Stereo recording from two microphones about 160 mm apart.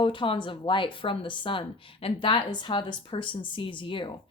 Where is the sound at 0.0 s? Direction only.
30° left (ahead or behind).